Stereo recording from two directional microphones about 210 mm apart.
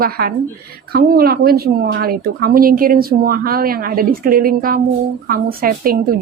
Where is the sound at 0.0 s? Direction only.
45° right (ahead or behind).